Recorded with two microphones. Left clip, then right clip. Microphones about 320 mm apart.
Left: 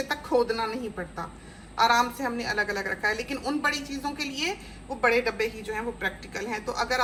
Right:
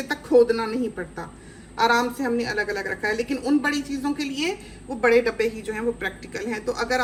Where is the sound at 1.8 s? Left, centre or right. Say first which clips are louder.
Right 2 dB; centre.